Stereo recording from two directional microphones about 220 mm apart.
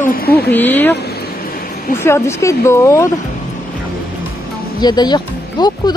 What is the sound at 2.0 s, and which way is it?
Speech, 10° left (ahead or behind).